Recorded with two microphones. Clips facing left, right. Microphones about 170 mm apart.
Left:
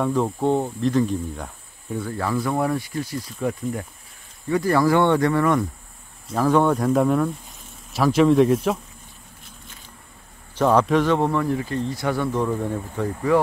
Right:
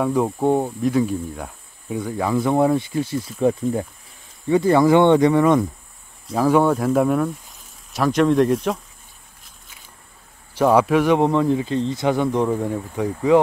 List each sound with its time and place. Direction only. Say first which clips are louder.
0.0 s speech: right 2 dB; 10° right (ahead or behind)
6.3 s speech: right 2 dB; 10° right (ahead or behind)
10.6 s speech: right 2 dB; 10° right (ahead or behind)